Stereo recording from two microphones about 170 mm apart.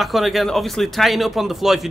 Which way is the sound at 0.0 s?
Centre (ahead or behind).